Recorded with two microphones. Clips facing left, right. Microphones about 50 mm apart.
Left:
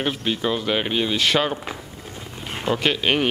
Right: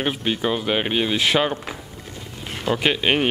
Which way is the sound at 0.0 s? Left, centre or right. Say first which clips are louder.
Right 1 dB; centre.